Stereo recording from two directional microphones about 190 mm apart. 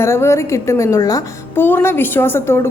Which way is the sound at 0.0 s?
15° left (ahead or behind).